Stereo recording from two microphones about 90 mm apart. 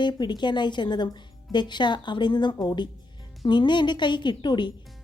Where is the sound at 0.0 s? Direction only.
55° left (ahead or behind).